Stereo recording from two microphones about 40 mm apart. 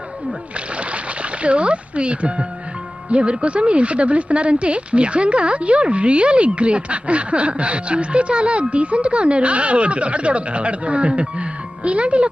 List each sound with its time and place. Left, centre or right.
0.5 s speech: right